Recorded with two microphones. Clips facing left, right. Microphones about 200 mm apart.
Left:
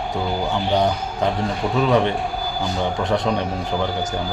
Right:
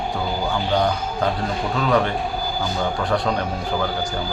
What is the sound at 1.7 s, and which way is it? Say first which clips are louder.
Speech: left 2 dB; 20° left (ahead or behind).